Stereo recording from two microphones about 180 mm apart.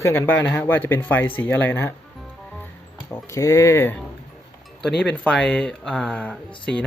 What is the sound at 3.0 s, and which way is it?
Speech, 10° left (ahead or behind).